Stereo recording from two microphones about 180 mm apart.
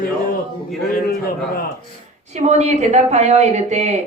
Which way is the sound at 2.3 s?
40° right (ahead or behind).